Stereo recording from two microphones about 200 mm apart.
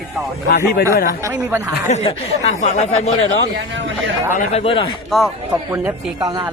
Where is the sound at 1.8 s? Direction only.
35° left (ahead or behind).